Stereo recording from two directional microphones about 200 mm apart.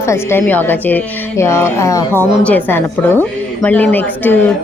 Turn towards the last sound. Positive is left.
turn(degrees=10)  # may be behind; listen again after turning